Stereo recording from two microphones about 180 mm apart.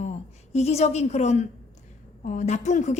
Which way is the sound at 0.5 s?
35° left (ahead or behind).